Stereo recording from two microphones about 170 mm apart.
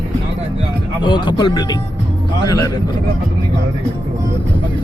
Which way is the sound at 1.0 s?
30° left (ahead or behind).